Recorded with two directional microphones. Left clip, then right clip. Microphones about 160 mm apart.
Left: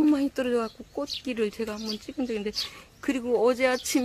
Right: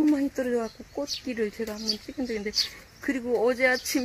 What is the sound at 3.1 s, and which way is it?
Speech, 35° left (ahead or behind).